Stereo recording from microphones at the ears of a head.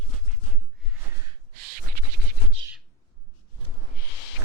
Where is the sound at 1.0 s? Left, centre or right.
Right.